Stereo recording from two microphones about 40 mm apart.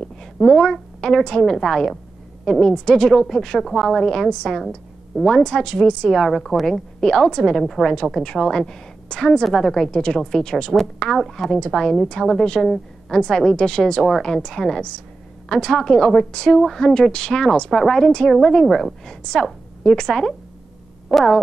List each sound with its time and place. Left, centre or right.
0.2 s a woman's voice: centre
2.4 s a woman's voice: centre
4.1 s a woman's voice: centre
4.5 s a woman's voice: centre
5.4 s a woman's voice: centre
6.1 s speech: centre
6.6 s a woman's voice: centre
8.2 s a woman's voice: centre
21.1 s a sound: centre